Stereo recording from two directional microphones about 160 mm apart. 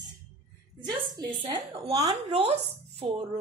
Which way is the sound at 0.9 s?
30° right (ahead or behind).